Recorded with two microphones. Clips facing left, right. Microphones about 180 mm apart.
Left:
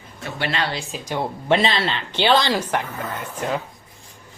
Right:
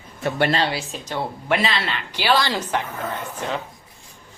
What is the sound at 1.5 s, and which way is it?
A woman's voice, 30° left (ahead or behind).